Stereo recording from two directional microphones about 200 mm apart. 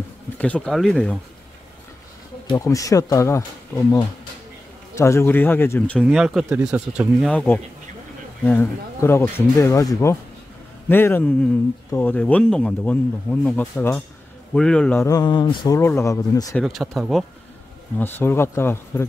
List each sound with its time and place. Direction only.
0.4 s speech: 5° left (ahead or behind)
2.4 s speech: 20° left (ahead or behind)
16.5 s speech: centre (ahead or behind)